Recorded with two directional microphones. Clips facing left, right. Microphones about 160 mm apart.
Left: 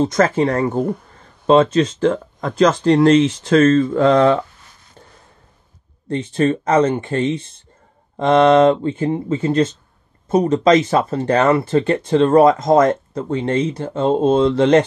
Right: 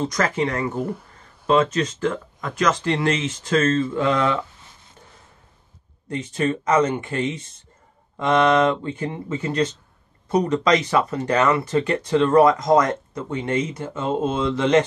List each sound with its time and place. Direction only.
0.0 s speech: 30° left (ahead or behind)
6.0 s speech: 30° left (ahead or behind)